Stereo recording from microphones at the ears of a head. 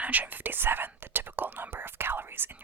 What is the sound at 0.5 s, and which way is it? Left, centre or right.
Whispering, right.